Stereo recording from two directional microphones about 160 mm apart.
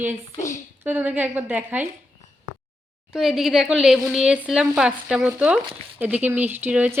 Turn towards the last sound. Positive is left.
turn(degrees=-10)  # may be behind; listen again after turning